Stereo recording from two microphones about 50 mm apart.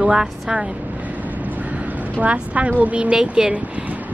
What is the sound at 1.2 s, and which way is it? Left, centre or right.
Vehicle, right.